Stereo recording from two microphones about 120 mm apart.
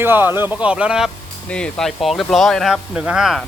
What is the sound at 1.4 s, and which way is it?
Speech, 10° left (ahead or behind).